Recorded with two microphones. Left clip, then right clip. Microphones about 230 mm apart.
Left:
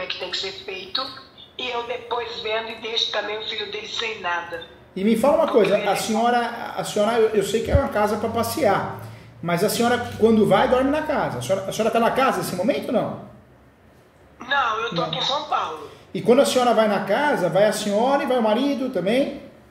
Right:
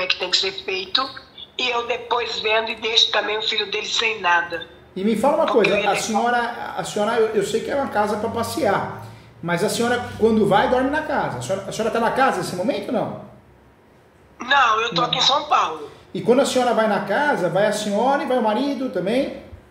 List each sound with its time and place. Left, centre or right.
0.0 s a woman's voice: right
4.9 s speech: centre
5.4 s a woman's voice: right
5.9 s speech: centre
9.8 s speech: centre
14.4 s a woman's voice: right
16.1 s a man's voice: centre